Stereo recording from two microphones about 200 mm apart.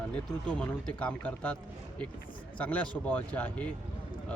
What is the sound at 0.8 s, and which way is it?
Speech, 5° left (ahead or behind).